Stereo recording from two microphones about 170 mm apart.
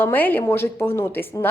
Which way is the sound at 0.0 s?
10° left (ahead or behind).